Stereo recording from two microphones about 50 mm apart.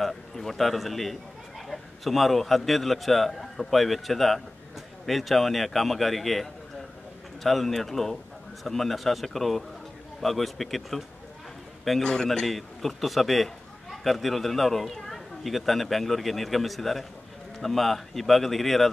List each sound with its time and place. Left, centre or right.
0.0 s a man's voice: centre
12.0 s a man's voice: centre
12.4 s a man's voice: centre